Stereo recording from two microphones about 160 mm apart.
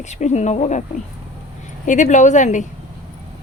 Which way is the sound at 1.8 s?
50° left (ahead or behind).